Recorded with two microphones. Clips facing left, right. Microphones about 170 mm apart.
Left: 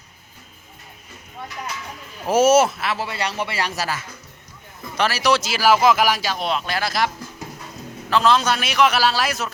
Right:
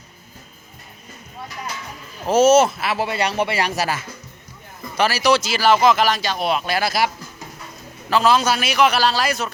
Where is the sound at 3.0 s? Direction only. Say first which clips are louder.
Right 5 dB; 15° right (ahead or behind).